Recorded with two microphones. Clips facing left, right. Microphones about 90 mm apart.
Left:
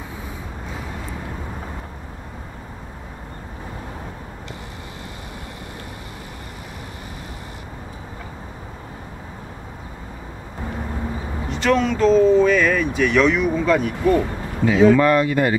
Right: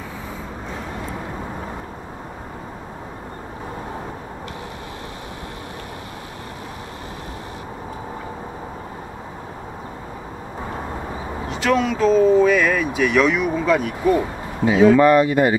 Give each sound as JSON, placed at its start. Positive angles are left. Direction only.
{"t": 11.4, "sound": "speech", "side_deg": 0}
{"t": 14.1, "sound": "a sound", "side_deg": -15}
{"t": 15.0, "sound": "speech", "side_deg": -20}